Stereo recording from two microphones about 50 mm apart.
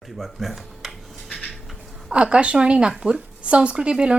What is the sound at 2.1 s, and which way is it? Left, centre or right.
A woman's voice, right.